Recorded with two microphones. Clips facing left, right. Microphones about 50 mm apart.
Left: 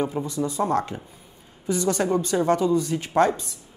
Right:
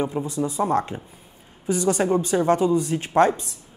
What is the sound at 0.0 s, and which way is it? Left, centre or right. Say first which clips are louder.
Speech: right 1 dB; centre.